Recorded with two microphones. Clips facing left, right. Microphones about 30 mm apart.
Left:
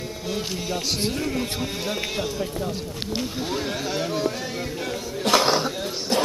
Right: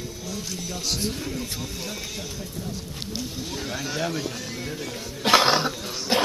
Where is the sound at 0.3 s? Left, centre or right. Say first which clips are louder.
Left 7 dB; left.